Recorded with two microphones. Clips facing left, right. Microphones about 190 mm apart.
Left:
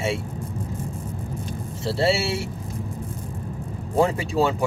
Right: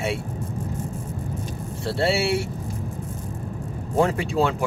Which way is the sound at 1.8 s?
Centre (ahead or behind).